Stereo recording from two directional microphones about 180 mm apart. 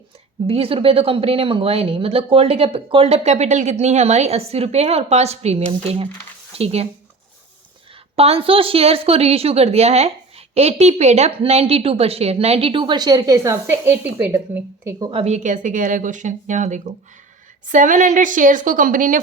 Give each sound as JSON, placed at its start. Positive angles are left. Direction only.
{"t": 0.4, "sound": "speech", "side_deg": -30}
{"t": 8.1, "sound": "speech", "side_deg": -35}
{"t": 15.2, "sound": "speech", "side_deg": -40}